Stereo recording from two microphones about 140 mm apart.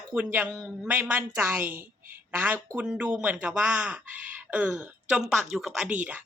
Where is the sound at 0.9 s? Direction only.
15° right (ahead or behind).